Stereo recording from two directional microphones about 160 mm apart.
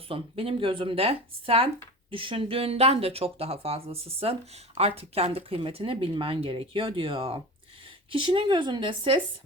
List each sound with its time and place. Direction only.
0.1 s speech: 35° right (ahead or behind)